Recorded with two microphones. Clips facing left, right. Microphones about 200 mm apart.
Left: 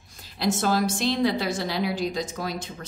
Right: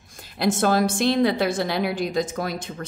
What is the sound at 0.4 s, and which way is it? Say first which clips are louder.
A woman's voice: right 3 dB; 55° right (ahead or behind).